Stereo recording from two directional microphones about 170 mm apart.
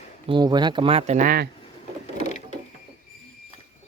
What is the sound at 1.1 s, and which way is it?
Speech, 60° right (ahead or behind).